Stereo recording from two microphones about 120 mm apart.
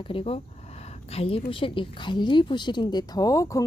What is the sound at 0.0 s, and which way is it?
A woman's voice, 50° left (ahead or behind).